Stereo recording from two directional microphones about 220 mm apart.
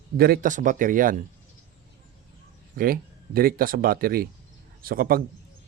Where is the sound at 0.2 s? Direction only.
40° right (ahead or behind).